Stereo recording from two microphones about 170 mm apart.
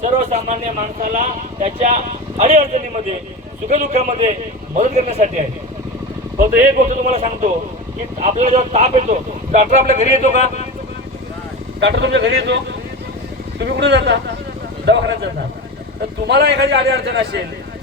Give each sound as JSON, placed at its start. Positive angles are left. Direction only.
{"t": 0.0, "sound": "a man's voice", "side_deg": -45}
{"t": 6.7, "sound": "speech", "side_deg": -50}
{"t": 11.8, "sound": "speech", "side_deg": -90}
{"t": 13.6, "sound": "a man's voice", "side_deg": -90}